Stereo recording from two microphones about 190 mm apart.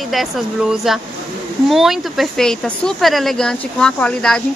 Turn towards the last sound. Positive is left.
turn(degrees=5)  # may be behind; listen again after turning